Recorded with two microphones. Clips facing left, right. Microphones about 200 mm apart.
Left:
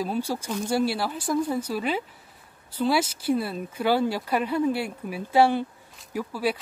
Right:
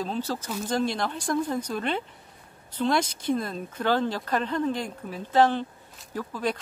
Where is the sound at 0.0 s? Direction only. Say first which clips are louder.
Left 2 dB; 10° left (ahead or behind).